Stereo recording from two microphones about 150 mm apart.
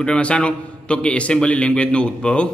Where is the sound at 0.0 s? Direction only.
5° left (ahead or behind).